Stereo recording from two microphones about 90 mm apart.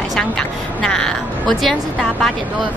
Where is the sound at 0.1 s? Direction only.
5° left (ahead or behind).